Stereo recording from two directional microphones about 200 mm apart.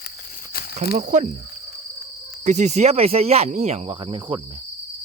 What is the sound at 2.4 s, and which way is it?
Speech, 35° right (ahead or behind).